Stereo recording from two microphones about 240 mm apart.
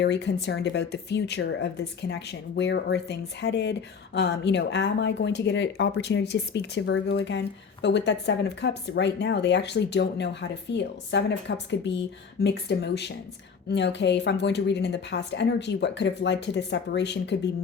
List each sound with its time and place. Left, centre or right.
0.0 s speech: left